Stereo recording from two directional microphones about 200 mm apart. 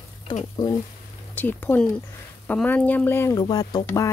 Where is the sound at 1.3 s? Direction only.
10° left (ahead or behind).